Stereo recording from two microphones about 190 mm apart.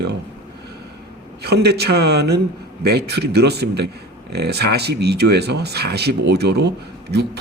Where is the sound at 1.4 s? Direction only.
60° right (ahead or behind).